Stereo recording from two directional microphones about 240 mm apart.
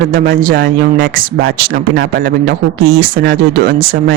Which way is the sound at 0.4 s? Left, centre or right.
Right.